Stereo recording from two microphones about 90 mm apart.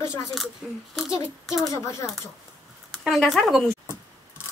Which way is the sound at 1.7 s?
35° left (ahead or behind).